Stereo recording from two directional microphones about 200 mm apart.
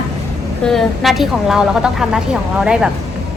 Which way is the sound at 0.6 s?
Centre (ahead or behind).